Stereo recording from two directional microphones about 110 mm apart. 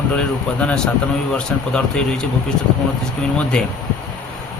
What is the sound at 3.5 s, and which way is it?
Speech, 10° left (ahead or behind).